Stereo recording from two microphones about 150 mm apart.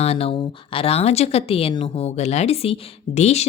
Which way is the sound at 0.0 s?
40° left (ahead or behind).